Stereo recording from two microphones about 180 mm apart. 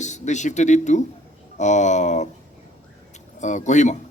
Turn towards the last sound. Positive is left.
turn(degrees=40)  # may be behind; listen again after turning